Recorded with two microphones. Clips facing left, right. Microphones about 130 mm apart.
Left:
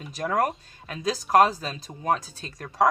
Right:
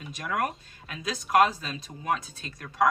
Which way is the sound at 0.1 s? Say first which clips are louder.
Left 5 dB; 35° left (ahead or behind).